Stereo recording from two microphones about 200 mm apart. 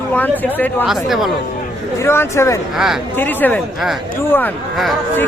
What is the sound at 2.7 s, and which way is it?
Speech, centre (ahead or behind).